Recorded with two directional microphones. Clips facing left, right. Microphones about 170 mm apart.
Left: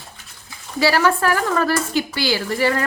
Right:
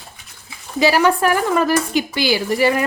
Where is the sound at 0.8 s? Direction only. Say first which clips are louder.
Right 2 dB; 15° right (ahead or behind).